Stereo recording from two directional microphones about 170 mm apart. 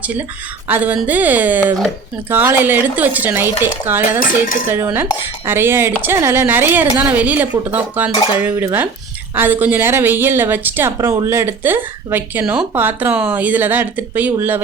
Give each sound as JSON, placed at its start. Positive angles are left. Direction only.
{"t": 0.7, "sound": "a woman's voice", "side_deg": -10}
{"t": 4.2, "sound": "cutlery", "side_deg": 55}
{"t": 4.7, "sound": "a woman's voice", "side_deg": -10}